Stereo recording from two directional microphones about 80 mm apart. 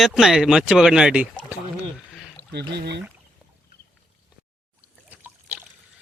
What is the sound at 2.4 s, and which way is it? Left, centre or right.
Pour, right.